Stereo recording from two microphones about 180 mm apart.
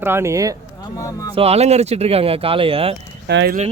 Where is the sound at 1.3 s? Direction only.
35° right (ahead or behind).